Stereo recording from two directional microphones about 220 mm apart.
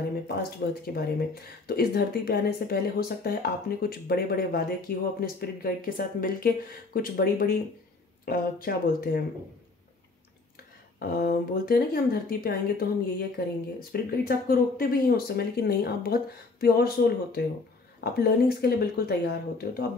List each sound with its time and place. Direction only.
0.9 s speech: 45° left (ahead or behind)
11.0 s speech: 45° left (ahead or behind)